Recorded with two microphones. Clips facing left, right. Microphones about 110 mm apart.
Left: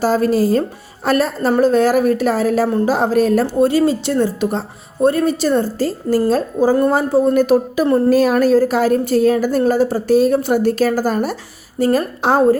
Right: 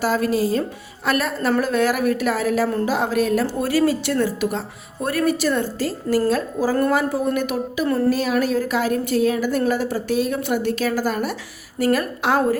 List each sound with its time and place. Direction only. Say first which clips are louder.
0.0 s a woman's voice: left 5 dB; 35° left (ahead or behind)
3.6 s speech: left 5 dB; 25° left (ahead or behind)
8.1 s a woman's voice: left 8 dB; 45° left (ahead or behind)